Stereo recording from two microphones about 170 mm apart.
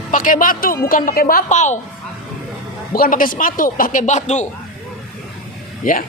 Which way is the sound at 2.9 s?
55° left (ahead or behind).